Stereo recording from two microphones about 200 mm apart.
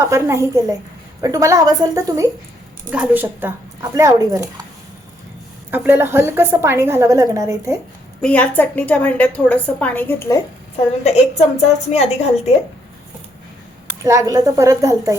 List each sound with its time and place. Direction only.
0.0 s a woman's voice: 15° right (ahead or behind)
5.7 s a woman's voice: 10° right (ahead or behind)
8.2 s a woman's voice: 5° left (ahead or behind)
10.8 s a woman's voice: 35° left (ahead or behind)
14.0 s a woman's voice: 15° right (ahead or behind)